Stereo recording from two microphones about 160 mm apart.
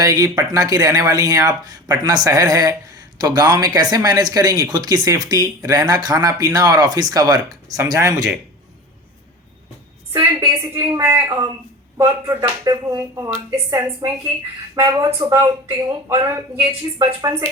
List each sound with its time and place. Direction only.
0.0 s speech: 20° right (ahead or behind)
10.1 s speech: 20° right (ahead or behind)